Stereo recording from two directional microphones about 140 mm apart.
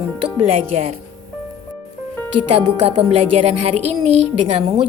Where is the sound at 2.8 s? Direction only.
45° right (ahead or behind).